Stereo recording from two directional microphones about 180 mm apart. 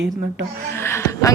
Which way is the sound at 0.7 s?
15° left (ahead or behind).